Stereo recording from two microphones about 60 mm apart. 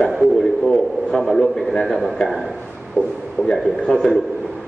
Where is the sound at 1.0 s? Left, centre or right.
Centre.